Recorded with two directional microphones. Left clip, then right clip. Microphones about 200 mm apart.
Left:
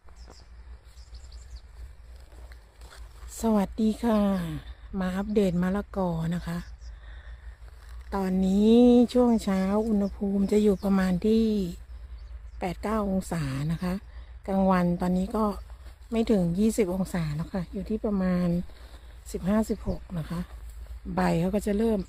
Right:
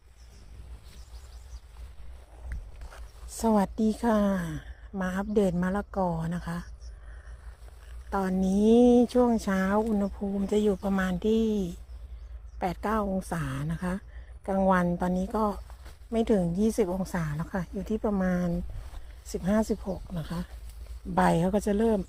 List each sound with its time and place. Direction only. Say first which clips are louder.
3.3 s a woman's voice: right 1 dB; 10° left (ahead or behind)
8.1 s a woman's voice: even; 15° left (ahead or behind)
19.3 s a woman's voice: even; 10° left (ahead or behind)